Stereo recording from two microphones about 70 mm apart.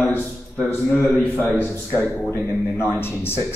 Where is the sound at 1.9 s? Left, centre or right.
Left.